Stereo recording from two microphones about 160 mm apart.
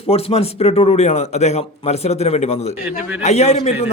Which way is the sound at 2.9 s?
5° right (ahead or behind).